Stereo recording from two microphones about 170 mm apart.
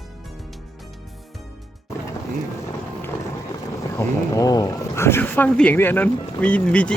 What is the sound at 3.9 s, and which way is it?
Speech, 20° left (ahead or behind).